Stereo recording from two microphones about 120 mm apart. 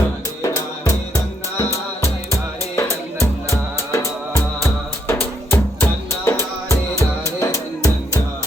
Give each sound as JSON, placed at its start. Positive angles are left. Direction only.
{"t": 0.4, "sound": "music", "side_deg": 30}